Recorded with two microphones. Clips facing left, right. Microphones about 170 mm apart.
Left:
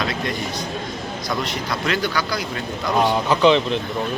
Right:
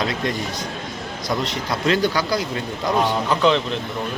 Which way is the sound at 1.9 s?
30° right (ahead or behind).